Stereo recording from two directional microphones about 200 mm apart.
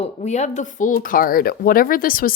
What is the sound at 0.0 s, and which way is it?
A woman's voice, 35° left (ahead or behind).